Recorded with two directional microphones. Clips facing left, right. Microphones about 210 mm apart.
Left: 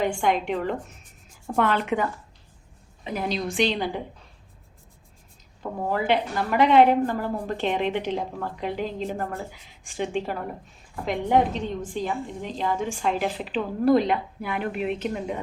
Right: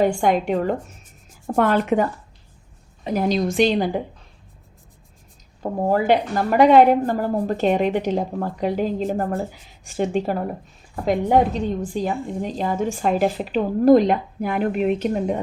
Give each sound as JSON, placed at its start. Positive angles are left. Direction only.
{"t": 0.0, "sound": "a woman's voice", "side_deg": -45}
{"t": 5.9, "sound": "a woman's voice", "side_deg": -45}